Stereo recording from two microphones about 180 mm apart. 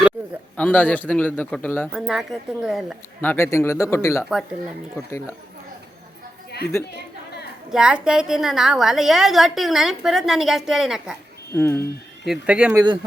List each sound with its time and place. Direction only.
0.5 s a man's voice: 10° left (ahead or behind)
1.9 s a woman's voice: centre (ahead or behind)
3.2 s a man's voice: 10° left (ahead or behind)
4.3 s a woman's voice: centre (ahead or behind)
4.9 s a man's voice: 15° left (ahead or behind)
7.7 s a woman's voice: 5° right (ahead or behind)
11.5 s a man's voice: 10° left (ahead or behind)
12.2 s a woman's voice: 5° right (ahead or behind)
12.7 s speech: 25° right (ahead or behind)